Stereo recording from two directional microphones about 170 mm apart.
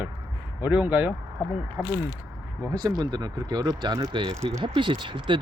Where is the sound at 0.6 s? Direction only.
10° right (ahead or behind).